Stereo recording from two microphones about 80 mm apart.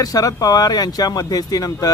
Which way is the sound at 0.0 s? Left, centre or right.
Left.